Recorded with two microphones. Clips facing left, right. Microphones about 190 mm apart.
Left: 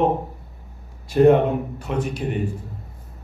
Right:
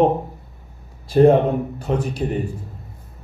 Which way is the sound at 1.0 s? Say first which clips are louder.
Right 1 dB; 35° right (ahead or behind).